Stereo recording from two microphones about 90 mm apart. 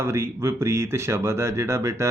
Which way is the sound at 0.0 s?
30° right (ahead or behind).